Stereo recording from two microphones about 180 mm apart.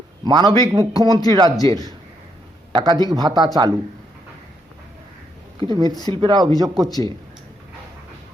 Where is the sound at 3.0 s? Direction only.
20° right (ahead or behind).